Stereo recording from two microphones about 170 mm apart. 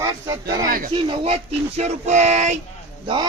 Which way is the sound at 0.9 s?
35° right (ahead or behind).